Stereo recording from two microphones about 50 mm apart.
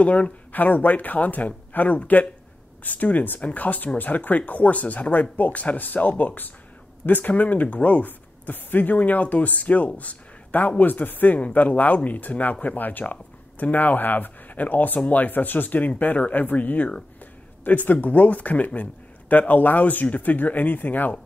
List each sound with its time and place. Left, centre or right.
0.0 s speech: left